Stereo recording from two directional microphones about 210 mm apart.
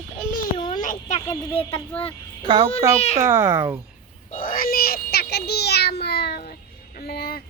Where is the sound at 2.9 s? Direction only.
30° left (ahead or behind).